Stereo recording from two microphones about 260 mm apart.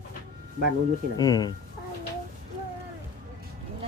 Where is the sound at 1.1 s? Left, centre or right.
Centre.